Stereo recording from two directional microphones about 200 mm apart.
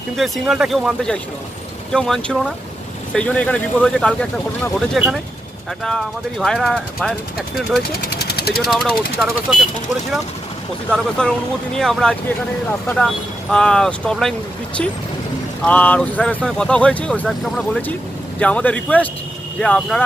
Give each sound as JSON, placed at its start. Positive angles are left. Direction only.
{"t": 0.2, "sound": "speech", "side_deg": 0}
{"t": 8.1, "sound": "speech", "side_deg": 50}
{"t": 8.6, "sound": "speech", "side_deg": 0}
{"t": 10.9, "sound": "speech", "side_deg": 5}
{"t": 15.6, "sound": "speech", "side_deg": 5}